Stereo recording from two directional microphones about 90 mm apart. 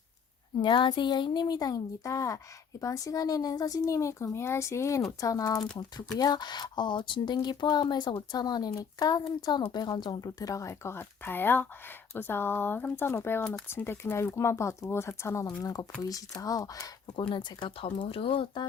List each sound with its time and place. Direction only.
0.6 s speech: 65° left (ahead or behind); by 5.6 s 40° left (ahead or behind)
6.1 s speech: 50° left (ahead or behind)
10.9 s speech: 25° left (ahead or behind); by 16.9 s 40° left (ahead or behind)
17.2 s speech: 65° left (ahead or behind)